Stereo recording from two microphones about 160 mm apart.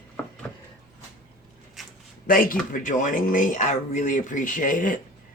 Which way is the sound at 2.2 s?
60° left (ahead or behind).